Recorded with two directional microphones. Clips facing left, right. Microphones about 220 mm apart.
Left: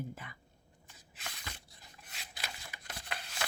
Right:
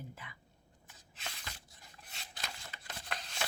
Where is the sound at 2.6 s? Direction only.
10° left (ahead or behind).